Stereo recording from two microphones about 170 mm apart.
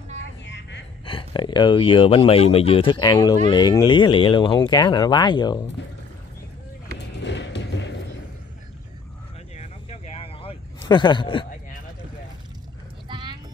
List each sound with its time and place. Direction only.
0.2 s vehicle: 90° left
1.0 s speech: 30° left (ahead or behind)
7.2 s music: 90° left
9.6 s vehicle: 40° left (ahead or behind)
10.9 s speech: 25° left (ahead or behind)
13.1 s clip-clop: 25° right (ahead or behind)